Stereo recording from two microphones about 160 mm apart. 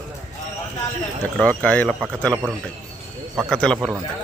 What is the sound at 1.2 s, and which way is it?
Speech, 10° left (ahead or behind).